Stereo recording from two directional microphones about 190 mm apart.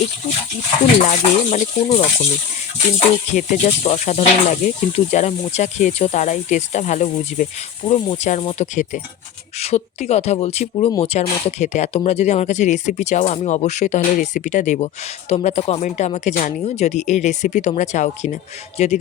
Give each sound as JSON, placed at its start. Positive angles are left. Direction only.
{"t": 1.0, "sound": "speech", "side_deg": 40}
{"t": 3.3, "sound": "speech", "side_deg": 35}